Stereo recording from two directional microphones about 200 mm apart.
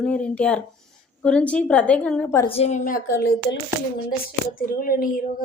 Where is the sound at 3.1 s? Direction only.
50° left (ahead or behind).